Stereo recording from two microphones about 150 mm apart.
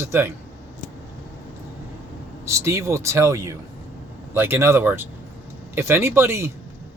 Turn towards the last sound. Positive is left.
turn(degrees=-15)  # may be behind; listen again after turning